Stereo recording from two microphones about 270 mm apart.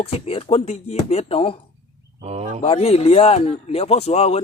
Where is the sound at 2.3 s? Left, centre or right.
Right.